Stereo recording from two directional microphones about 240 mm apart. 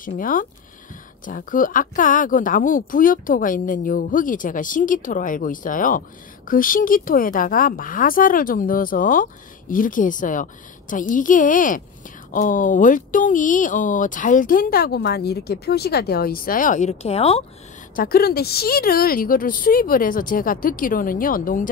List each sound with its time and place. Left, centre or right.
0.0 s a woman's voice: left
17.9 s a woman's voice: left